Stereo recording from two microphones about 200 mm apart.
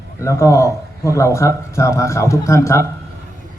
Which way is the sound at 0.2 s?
15° left (ahead or behind).